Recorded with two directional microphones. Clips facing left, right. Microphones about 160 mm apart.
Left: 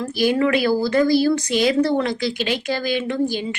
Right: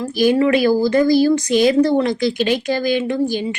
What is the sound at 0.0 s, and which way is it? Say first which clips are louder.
Speech: right 4 dB; 40° right (ahead or behind).